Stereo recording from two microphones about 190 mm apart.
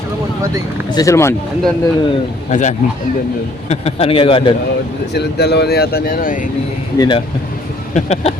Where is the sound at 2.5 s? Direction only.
40° left (ahead or behind).